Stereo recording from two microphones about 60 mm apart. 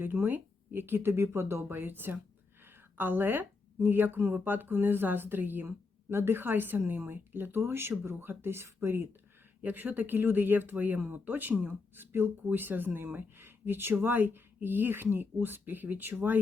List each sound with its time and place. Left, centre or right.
0.0 s a woman's voice: right
9.6 s speech: right